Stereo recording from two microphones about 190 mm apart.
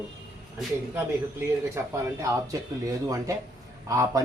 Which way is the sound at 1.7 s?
15° right (ahead or behind).